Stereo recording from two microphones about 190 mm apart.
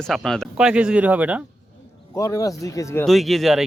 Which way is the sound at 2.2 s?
15° left (ahead or behind).